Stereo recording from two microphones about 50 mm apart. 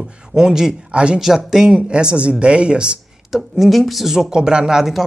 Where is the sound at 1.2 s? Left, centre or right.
Centre.